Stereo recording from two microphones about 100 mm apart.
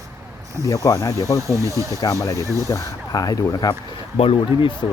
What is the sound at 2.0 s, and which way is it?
Speech, 35° left (ahead or behind).